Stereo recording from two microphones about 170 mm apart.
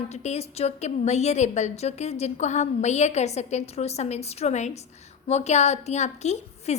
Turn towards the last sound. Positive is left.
turn(degrees=40)  # may be behind; listen again after turning